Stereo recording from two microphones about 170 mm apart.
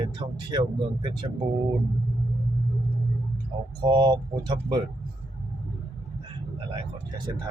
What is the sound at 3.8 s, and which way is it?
Speech, 25° right (ahead or behind).